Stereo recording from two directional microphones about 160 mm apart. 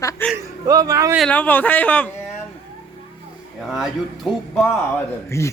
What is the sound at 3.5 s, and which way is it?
Speech, centre (ahead or behind).